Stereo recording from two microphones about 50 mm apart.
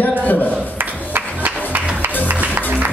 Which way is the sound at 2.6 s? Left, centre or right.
Right.